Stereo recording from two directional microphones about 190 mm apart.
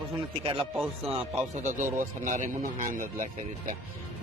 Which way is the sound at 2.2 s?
45° right (ahead or behind).